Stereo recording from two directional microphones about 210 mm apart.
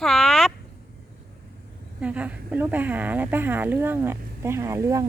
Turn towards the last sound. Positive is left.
turn(degrees=-15)  # may be behind; listen again after turning